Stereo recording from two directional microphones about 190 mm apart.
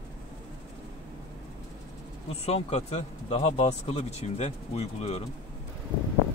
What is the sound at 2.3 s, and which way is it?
Speech, 35° left (ahead or behind).